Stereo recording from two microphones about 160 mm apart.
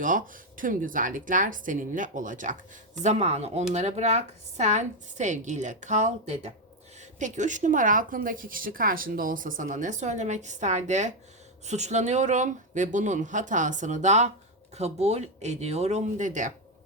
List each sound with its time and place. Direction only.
0.0 s speech: 55° right (ahead or behind)